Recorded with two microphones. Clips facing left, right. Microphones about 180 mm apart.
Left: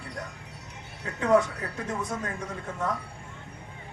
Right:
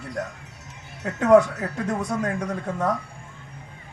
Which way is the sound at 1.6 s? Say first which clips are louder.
Right 6 dB; 70° right (ahead or behind).